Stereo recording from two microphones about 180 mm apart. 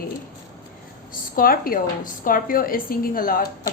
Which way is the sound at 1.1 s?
50° left (ahead or behind).